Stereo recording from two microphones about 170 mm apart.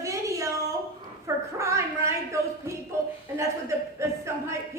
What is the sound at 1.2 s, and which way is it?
A woman's voice, 15° right (ahead or behind).